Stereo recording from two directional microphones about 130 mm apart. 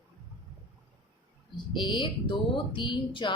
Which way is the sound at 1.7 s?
35° left (ahead or behind).